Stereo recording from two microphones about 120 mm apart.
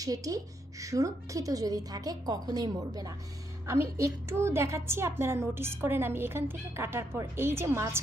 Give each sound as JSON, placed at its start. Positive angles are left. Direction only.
{"t": 0.0, "sound": "a woman's voice", "side_deg": -30}